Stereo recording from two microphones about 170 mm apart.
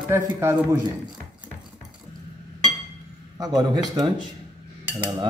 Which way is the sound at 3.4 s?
25° right (ahead or behind).